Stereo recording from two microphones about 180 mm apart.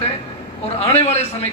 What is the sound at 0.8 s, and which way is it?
Speech, 35° left (ahead or behind).